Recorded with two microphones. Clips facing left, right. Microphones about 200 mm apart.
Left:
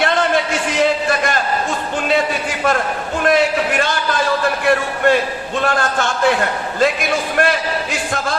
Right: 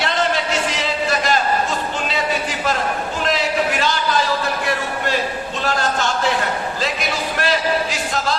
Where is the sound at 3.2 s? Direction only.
55° left (ahead or behind).